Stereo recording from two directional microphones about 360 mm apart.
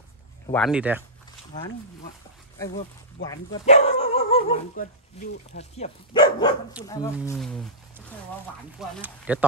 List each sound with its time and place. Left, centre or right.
0.5 s speech: centre
2.6 s speech: centre
8.7 s speech: centre